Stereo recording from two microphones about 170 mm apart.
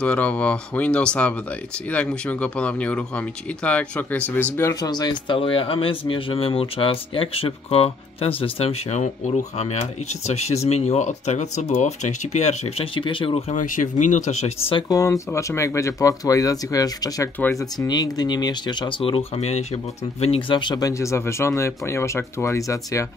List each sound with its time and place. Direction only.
0.0 s speech: 10° left (ahead or behind)
4.6 s speech: 20° left (ahead or behind)
13.6 s speech: 50° left (ahead or behind)
14.8 s speech: 20° left (ahead or behind)